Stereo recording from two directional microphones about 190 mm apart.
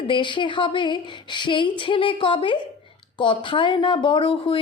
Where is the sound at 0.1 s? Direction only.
25° left (ahead or behind).